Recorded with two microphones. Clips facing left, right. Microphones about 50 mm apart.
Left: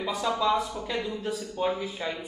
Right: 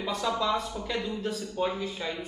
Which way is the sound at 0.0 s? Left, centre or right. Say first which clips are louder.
Left 1 dB; centre.